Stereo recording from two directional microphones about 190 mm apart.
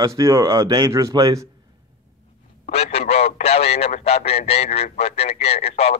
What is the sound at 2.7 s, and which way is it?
Speech, 30° left (ahead or behind).